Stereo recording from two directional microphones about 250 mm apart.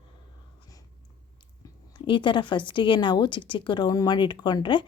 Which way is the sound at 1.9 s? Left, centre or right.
Centre.